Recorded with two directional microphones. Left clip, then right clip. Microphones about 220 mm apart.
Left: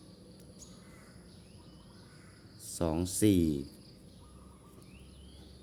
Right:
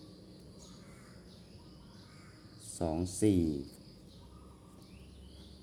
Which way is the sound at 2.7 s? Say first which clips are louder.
Left 2 dB; 30° left (ahead or behind).